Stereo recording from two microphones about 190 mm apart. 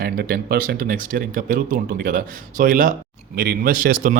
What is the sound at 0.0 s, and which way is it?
Speech, 50° right (ahead or behind).